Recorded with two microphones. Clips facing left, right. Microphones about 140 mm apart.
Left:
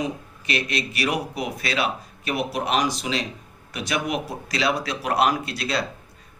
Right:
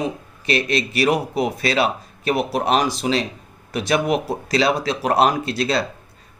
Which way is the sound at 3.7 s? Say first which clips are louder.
Right 7 dB; 30° right (ahead or behind).